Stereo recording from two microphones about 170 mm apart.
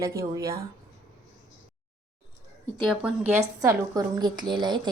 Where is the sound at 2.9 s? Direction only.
5° right (ahead or behind).